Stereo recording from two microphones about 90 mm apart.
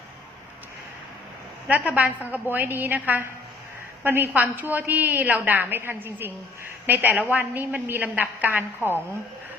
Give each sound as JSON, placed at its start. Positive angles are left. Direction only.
{"t": 1.6, "sound": "a woman's voice", "side_deg": -15}